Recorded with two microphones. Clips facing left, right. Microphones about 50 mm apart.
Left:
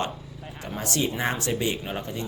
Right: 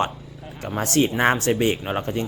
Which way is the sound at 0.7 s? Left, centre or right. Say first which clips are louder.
Right 7 dB; right.